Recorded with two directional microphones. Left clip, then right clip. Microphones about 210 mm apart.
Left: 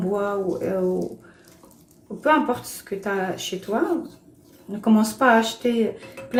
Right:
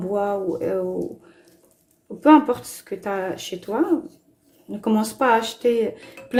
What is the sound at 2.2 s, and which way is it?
Speech, 40° right (ahead or behind).